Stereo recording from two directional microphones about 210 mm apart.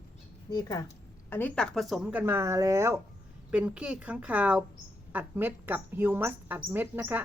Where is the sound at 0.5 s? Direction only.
15° left (ahead or behind); by 7.2 s 10° right (ahead or behind).